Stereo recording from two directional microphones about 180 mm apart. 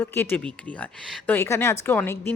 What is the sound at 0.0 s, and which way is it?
Speech, 10° left (ahead or behind).